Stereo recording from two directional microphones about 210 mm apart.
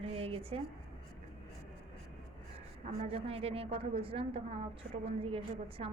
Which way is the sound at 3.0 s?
25° right (ahead or behind).